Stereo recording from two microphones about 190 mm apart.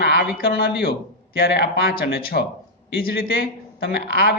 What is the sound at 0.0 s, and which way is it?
Speech, 60° left (ahead or behind).